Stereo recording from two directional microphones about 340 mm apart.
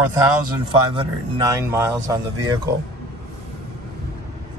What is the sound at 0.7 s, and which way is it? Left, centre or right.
Speech, centre.